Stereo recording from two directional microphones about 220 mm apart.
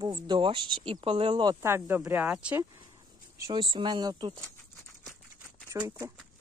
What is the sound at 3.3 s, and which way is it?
Speech, 15° right (ahead or behind).